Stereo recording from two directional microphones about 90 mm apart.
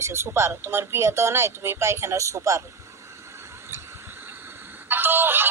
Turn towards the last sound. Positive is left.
turn(degrees=-25)  # may be behind; listen again after turning